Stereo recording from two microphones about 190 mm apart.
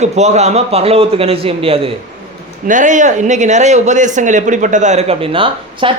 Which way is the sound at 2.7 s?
40° right (ahead or behind).